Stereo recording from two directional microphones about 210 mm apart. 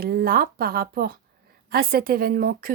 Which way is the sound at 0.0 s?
45° right (ahead or behind).